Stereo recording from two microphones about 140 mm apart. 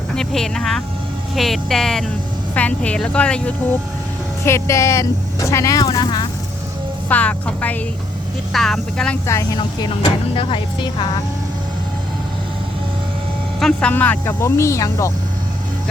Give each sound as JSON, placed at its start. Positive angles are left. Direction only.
{"t": 0.2, "sound": "speech", "side_deg": 5}
{"t": 4.4, "sound": "speech", "side_deg": 20}
{"t": 7.1, "sound": "speech", "side_deg": 10}
{"t": 10.0, "sound": "speech", "side_deg": 40}
{"t": 13.6, "sound": "speech", "side_deg": 5}
{"t": 13.9, "sound": "speech", "side_deg": 15}